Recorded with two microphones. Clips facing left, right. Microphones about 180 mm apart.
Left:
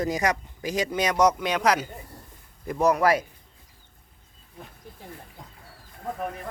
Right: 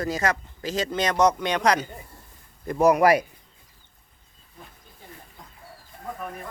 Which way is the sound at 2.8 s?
10° right (ahead or behind).